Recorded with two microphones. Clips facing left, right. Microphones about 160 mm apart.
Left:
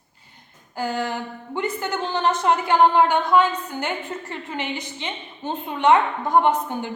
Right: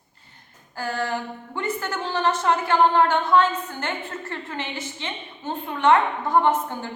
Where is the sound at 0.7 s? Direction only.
15° left (ahead or behind).